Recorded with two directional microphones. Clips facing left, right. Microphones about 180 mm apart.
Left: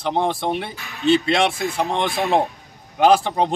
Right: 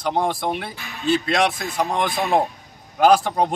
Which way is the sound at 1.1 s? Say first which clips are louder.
Left 2 dB; 25° left (ahead or behind).